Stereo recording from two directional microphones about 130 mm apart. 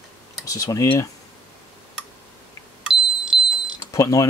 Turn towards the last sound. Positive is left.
turn(degrees=25)  # may be behind; listen again after turning